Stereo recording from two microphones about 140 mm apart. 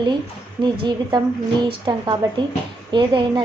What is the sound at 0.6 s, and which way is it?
A woman's voice, 30° right (ahead or behind).